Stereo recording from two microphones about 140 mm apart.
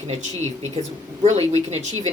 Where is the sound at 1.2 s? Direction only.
50° right (ahead or behind).